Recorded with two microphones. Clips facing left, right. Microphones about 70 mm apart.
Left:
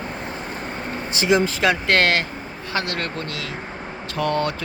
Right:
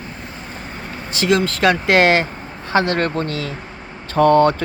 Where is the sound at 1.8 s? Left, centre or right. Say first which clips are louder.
Right 5 dB; centre; by 4.5 s right.